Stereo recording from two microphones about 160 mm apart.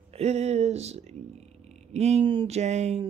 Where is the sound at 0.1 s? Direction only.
40° right (ahead or behind).